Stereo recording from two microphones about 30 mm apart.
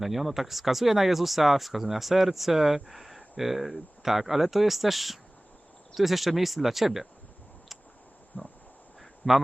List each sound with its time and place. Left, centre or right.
0.0 s speech: centre
8.4 s a sound: left
9.2 s speech: centre